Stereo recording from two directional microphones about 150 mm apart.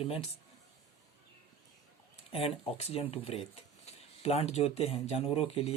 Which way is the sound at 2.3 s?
40° left (ahead or behind).